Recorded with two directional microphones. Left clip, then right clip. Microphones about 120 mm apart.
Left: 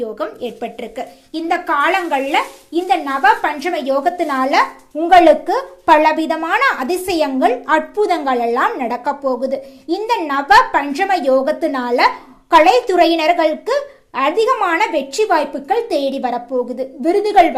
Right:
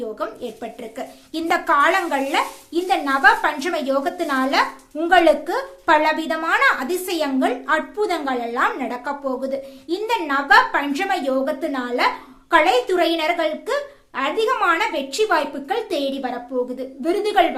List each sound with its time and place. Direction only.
0.2 s speech: 30° left (ahead or behind)
1.3 s a woman's voice: 5° right (ahead or behind)
1.9 s a woman's voice: 10° left (ahead or behind); by 17.5 s 40° left (ahead or behind)